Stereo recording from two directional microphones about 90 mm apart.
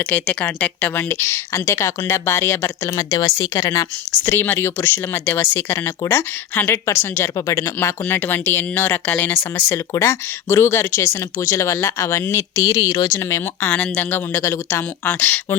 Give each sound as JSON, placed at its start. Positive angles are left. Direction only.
{"t": 0.0, "sound": "speech", "side_deg": 15}
{"t": 7.8, "sound": "speech", "side_deg": 25}